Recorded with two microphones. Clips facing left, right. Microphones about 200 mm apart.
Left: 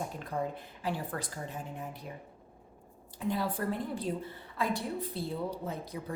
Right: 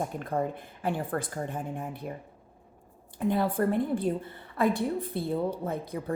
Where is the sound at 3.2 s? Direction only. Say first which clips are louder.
Right 6 dB; 55° right (ahead or behind).